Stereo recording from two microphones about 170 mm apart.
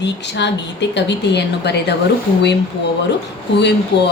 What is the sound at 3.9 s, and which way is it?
Speech, 80° left.